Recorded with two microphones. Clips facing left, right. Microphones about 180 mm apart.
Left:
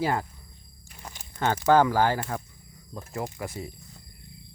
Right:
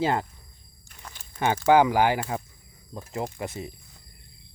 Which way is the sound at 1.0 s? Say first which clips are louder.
Left 2 dB; 15° left (ahead or behind).